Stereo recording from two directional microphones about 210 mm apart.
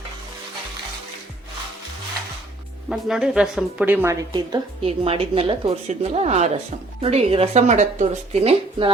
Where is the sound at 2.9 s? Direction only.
5° right (ahead or behind).